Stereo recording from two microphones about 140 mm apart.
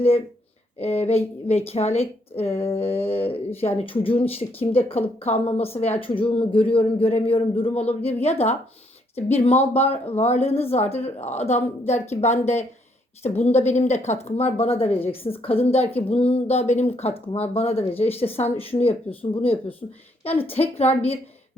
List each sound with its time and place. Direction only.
0.8 s a man's voice: 45° left (ahead or behind)